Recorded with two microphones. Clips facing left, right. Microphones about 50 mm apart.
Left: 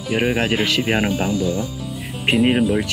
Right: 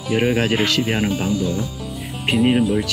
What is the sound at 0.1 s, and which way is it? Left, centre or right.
Speech, centre.